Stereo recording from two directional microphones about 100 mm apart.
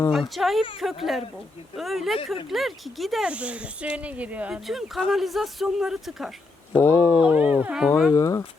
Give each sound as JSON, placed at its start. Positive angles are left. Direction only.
{"t": 0.1, "sound": "speech", "side_deg": 0}
{"t": 3.2, "sound": "speech", "side_deg": -10}
{"t": 4.6, "sound": "speech", "side_deg": 0}
{"t": 6.7, "sound": "speech", "side_deg": 25}
{"t": 7.2, "sound": "speech", "side_deg": -15}
{"t": 8.1, "sound": "speech", "side_deg": 30}